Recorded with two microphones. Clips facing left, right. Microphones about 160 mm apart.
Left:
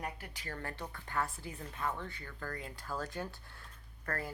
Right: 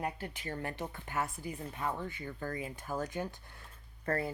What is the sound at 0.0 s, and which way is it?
Speech, 25° right (ahead or behind).